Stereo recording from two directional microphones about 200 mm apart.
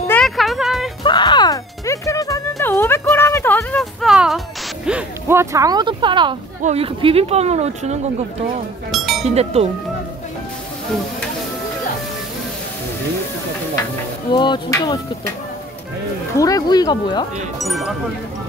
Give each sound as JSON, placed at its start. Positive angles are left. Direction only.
{"t": 0.1, "sound": "music", "side_deg": 0}
{"t": 1.0, "sound": "music", "side_deg": 20}
{"t": 4.0, "sound": "a sound", "side_deg": 0}
{"t": 4.8, "sound": "speech", "side_deg": -10}
{"t": 8.9, "sound": "music", "side_deg": 0}
{"t": 9.2, "sound": "speech", "side_deg": -30}
{"t": 14.3, "sound": "a sound", "side_deg": 25}
{"t": 16.3, "sound": "a sound", "side_deg": 15}
{"t": 17.6, "sound": "speech", "side_deg": 0}